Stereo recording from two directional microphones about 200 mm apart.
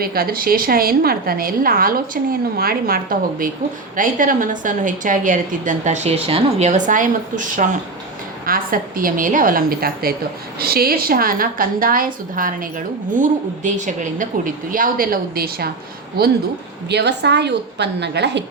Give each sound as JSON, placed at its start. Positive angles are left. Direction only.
{"t": 0.0, "sound": "a woman's voice", "side_deg": -50}
{"t": 16.9, "sound": "a woman's voice", "side_deg": -60}